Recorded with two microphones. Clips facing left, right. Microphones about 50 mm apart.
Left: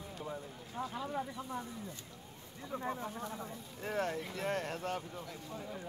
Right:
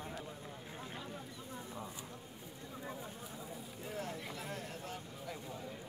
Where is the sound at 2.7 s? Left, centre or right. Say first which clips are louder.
Left 8 dB; left.